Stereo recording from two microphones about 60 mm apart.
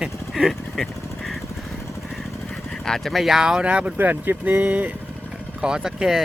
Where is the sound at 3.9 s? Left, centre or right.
Right.